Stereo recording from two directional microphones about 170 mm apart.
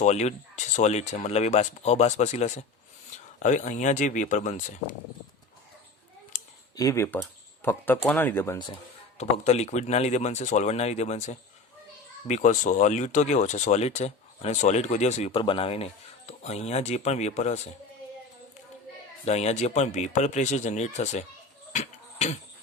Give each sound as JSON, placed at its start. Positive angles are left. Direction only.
{"t": 0.0, "sound": "speech", "side_deg": 40}
{"t": 6.3, "sound": "a sound", "side_deg": 50}
{"t": 6.7, "sound": "speech", "side_deg": 20}
{"t": 9.1, "sound": "speech", "side_deg": 40}
{"t": 19.2, "sound": "speech", "side_deg": 40}
{"t": 21.7, "sound": "a sound", "side_deg": 40}